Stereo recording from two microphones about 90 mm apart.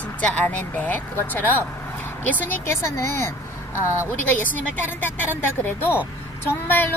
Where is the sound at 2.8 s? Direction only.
30° left (ahead or behind).